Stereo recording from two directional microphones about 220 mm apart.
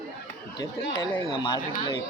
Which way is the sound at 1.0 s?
20° left (ahead or behind).